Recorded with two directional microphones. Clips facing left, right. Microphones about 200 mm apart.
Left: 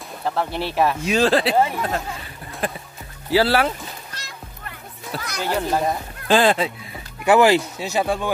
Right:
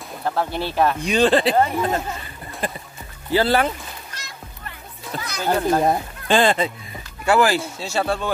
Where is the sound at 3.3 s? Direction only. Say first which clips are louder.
Even; 5° left (ahead or behind).